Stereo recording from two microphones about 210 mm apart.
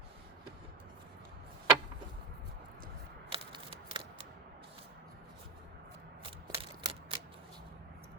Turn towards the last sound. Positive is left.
turn(degrees=-25)  # may be behind; listen again after turning